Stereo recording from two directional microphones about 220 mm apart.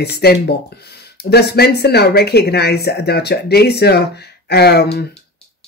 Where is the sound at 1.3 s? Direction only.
45° left (ahead or behind).